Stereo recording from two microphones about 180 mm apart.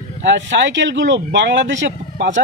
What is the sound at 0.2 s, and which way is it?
Speech, 90° right.